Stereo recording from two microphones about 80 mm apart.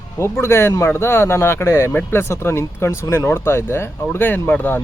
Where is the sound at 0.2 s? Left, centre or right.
Left.